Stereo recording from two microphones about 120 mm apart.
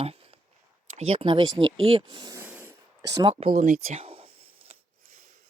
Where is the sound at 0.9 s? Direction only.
55° right (ahead or behind).